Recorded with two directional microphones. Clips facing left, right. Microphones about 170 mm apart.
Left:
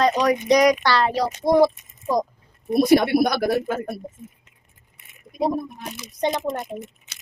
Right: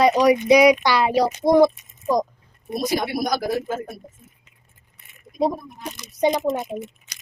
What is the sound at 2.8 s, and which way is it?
Speech, 65° left (ahead or behind).